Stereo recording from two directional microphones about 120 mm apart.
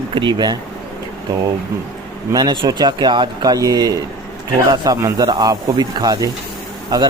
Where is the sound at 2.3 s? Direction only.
35° right (ahead or behind).